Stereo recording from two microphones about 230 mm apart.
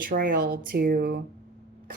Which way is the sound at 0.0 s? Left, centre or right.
Right.